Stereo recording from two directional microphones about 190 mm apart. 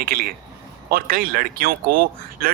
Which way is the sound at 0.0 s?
50° right (ahead or behind).